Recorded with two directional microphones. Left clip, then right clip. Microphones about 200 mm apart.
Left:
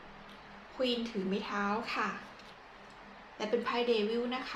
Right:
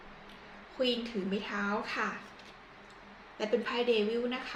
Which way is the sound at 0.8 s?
20° left (ahead or behind).